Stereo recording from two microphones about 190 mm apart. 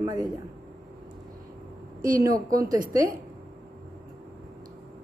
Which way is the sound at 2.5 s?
20° right (ahead or behind).